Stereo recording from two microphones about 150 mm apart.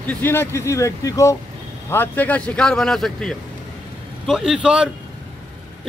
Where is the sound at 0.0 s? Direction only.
10° left (ahead or behind); by 4.8 s 5° right (ahead or behind).